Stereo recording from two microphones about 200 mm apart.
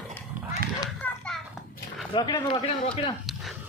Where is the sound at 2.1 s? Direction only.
20° left (ahead or behind).